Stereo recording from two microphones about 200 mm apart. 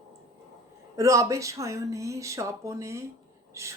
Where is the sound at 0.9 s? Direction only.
15° right (ahead or behind).